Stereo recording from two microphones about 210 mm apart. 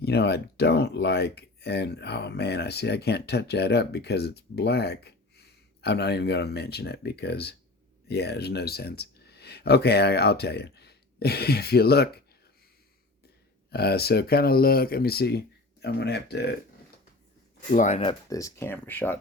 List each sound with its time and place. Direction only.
0.0 s speech: 50° left (ahead or behind)
13.7 s speech: 50° left (ahead or behind)
17.7 s speech: 35° left (ahead or behind); by 19.2 s 10° left (ahead or behind)